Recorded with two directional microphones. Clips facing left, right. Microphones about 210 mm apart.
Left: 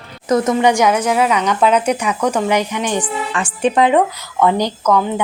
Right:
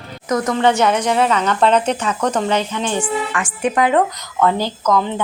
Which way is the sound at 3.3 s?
30° left (ahead or behind).